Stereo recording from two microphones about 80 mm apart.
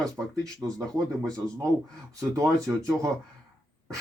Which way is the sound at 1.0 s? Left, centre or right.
Right.